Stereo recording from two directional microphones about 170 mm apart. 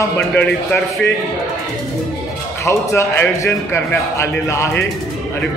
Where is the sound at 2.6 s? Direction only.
15° left (ahead or behind).